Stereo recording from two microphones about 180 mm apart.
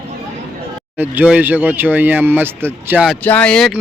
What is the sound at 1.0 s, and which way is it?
Speech, 10° right (ahead or behind).